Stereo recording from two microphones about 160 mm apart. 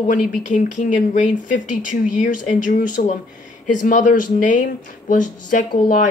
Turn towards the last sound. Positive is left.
turn(degrees=55)  # may be behind; listen again after turning